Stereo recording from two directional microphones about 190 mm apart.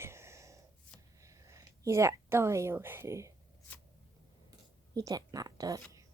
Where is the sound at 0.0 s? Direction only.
15° right (ahead or behind).